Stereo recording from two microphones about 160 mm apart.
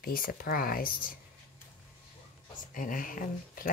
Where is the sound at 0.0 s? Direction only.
65° left (ahead or behind).